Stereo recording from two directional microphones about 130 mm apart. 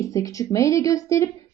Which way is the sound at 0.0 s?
25° left (ahead or behind).